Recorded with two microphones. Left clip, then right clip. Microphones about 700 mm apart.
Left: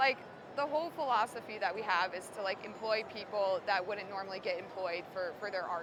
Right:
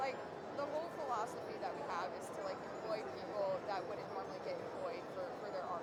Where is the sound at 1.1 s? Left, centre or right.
Left.